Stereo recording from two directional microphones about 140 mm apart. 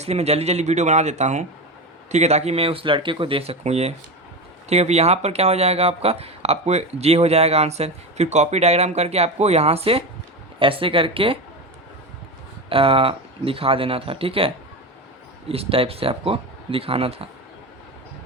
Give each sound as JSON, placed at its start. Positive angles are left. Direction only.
{"t": 0.0, "sound": "speech", "side_deg": -50}
{"t": 12.7, "sound": "speech", "side_deg": -40}